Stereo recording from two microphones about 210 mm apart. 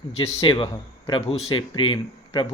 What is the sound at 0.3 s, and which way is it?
Speech, 15° left (ahead or behind).